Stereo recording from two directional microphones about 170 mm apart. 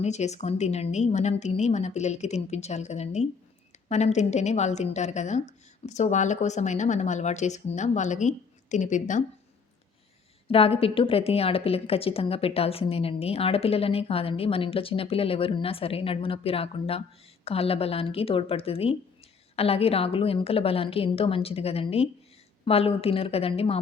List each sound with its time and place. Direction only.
0.0 s a woman's voice: 40° left (ahead or behind)
10.5 s a woman's voice: 35° left (ahead or behind)